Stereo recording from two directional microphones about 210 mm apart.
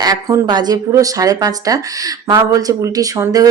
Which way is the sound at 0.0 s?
20° right (ahead or behind).